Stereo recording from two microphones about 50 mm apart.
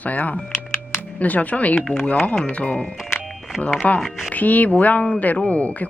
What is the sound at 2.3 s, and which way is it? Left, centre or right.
Speech, left.